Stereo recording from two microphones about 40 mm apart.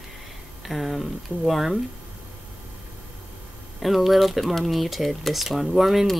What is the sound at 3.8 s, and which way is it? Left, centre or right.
Speech, centre.